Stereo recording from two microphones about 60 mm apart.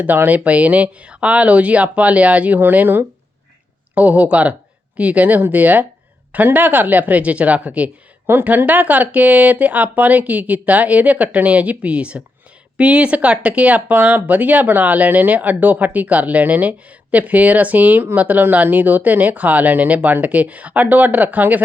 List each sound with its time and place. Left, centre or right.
0.0 s speech: right
2.6 s speech: right
3.9 s speech: right
8.3 s speech: right